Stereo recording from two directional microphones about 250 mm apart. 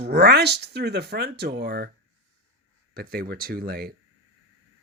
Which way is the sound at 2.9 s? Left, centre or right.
Right.